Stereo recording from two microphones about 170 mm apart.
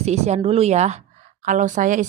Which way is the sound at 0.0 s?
40° right (ahead or behind).